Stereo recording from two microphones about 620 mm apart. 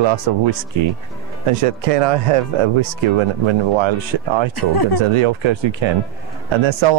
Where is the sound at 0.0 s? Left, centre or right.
Right.